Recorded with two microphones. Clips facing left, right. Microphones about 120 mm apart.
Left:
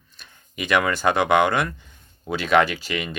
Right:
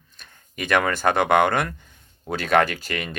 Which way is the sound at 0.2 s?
45° right (ahead or behind).